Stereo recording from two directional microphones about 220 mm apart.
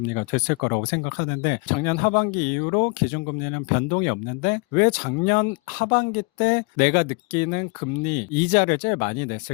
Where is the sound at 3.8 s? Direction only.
40° left (ahead or behind).